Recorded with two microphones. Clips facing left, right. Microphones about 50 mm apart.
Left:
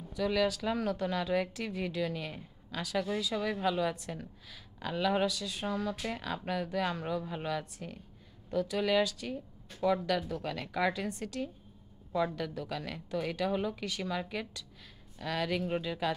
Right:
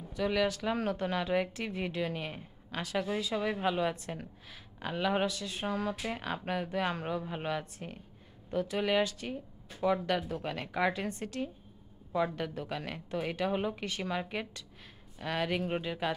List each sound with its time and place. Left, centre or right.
0.1 s a woman's voice: right
5.9 s speech: centre
6.2 s a woman's voice: right
9.7 s a woman's voice: centre